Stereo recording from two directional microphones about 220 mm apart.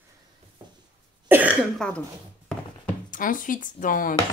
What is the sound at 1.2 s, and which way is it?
Cough, 5° right (ahead or behind).